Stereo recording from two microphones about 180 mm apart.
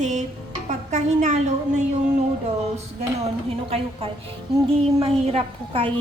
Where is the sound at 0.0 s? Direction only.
40° right (ahead or behind).